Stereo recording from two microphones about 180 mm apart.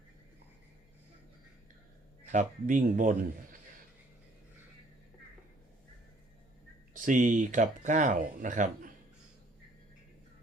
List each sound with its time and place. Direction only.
2.3 s speech: 45° right (ahead or behind)
6.9 s speech: 45° right (ahead or behind)